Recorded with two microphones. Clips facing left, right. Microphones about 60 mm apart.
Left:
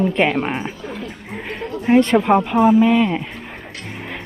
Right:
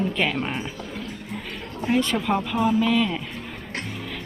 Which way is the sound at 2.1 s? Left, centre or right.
Left.